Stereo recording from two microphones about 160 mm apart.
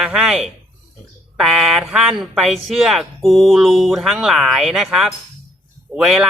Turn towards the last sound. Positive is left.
turn(degrees=0)  # may be behind; listen again after turning